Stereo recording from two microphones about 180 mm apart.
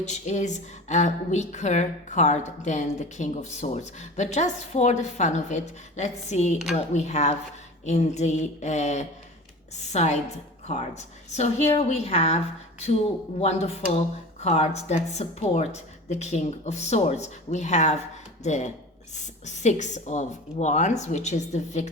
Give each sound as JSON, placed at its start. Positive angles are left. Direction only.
{"t": 0.0, "sound": "a woman's voice", "side_deg": 40}
{"t": 13.4, "sound": "a woman's voice", "side_deg": 35}